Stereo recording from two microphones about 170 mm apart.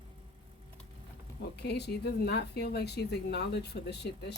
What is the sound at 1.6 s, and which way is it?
Speech, 75° left (ahead or behind).